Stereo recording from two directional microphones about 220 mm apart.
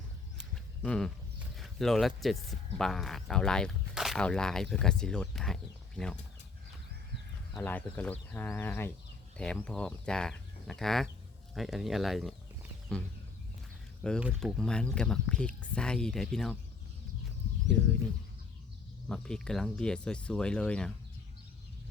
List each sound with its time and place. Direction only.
0.3 s a sound: centre (ahead or behind)
1.5 s speech: centre (ahead or behind)
7.5 s speech: 5° left (ahead or behind)
14.0 s speech: centre (ahead or behind)
19.0 s speech: 5° left (ahead or behind)